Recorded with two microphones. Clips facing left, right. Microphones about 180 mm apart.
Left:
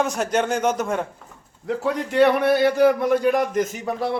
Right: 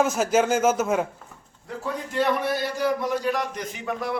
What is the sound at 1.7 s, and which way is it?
A man's voice, 75° left (ahead or behind).